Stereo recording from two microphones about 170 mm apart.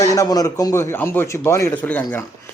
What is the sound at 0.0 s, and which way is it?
A man's voice, 20° left (ahead or behind).